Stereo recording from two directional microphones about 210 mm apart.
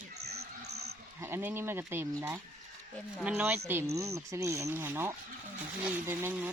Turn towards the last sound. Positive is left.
turn(degrees=-10)  # may be behind; listen again after turning